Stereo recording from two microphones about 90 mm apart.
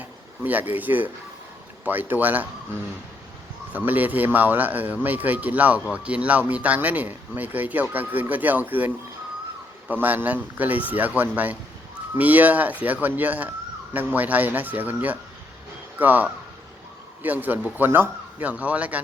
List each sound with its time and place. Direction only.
0.4 s speech: 20° right (ahead or behind)
3.7 s speech: 20° right (ahead or behind)
9.9 s speech: 20° right (ahead or behind)